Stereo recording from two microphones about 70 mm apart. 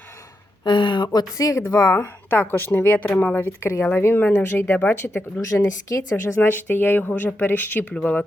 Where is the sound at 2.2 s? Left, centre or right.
Left.